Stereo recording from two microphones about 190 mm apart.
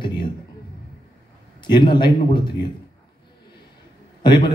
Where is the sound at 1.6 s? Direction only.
25° left (ahead or behind).